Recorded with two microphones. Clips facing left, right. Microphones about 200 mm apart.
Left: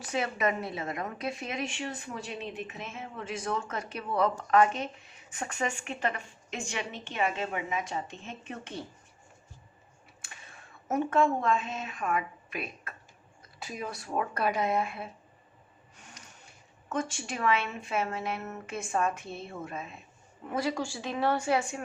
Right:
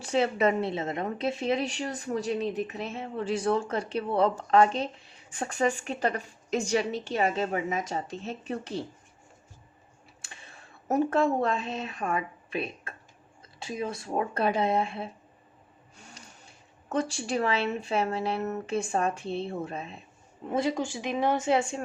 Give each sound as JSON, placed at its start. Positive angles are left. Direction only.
{"t": 0.0, "sound": "a woman's voice", "side_deg": -30}
{"t": 10.2, "sound": "speech", "side_deg": -30}
{"t": 16.0, "sound": "a sound", "side_deg": -30}
{"t": 16.9, "sound": "a woman's voice", "side_deg": -35}